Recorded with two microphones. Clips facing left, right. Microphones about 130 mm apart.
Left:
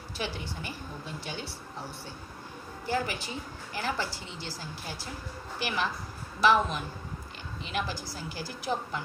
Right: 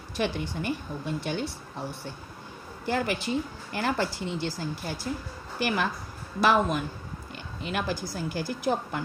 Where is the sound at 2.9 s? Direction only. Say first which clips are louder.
Right 4 dB; 60° right (ahead or behind).